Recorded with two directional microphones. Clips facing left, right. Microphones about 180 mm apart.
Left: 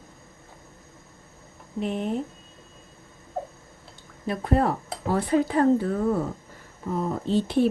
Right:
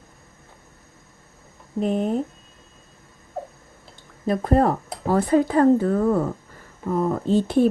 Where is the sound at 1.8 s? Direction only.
40° right (ahead or behind).